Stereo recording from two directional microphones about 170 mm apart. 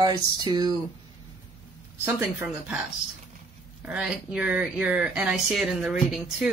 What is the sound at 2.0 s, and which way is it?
Speech, 10° right (ahead or behind).